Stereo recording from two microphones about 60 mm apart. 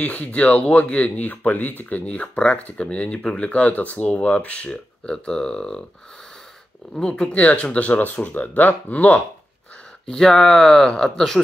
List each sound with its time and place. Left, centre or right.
0.0 s speech: left; by 5.9 s centre
7.0 s speech: centre
10.0 s speech: centre